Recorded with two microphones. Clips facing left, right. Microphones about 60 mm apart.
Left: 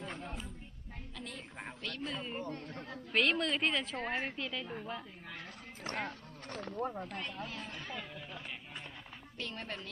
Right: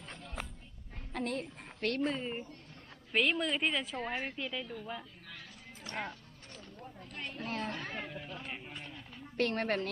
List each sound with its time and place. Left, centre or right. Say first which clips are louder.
0.1 s a sound: left 5 dB; left
1.1 s a sound: right 11 dB; right
1.8 s speech: right 9 dB; right
2.4 s speech: left 7 dB; left
3.1 s a woman's voice: even; centre
3.9 s speech: even; centre
4.4 s a woman's voice: right 1 dB; centre
5.9 s speech: left 1 dB; left
6.5 s speech: left 12 dB; left
7.3 s speech: right 5 dB; right
9.4 s speech: right 11 dB; right